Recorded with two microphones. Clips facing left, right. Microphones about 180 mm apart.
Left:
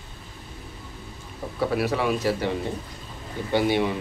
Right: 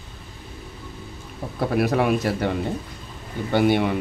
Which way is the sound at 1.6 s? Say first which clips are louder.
Right 3 dB; 50° right (ahead or behind).